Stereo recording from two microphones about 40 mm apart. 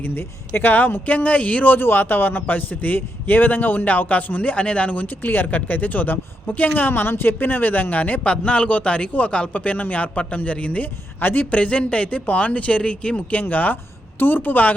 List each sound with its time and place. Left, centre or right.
0.0 s speech: left
0.7 s speech: left
1.0 s speech: left
1.8 s a man's voice: left
11.2 s a man's voice: left
11.5 s speech: left
13.5 s a man's voice: left
14.2 s a man's voice: left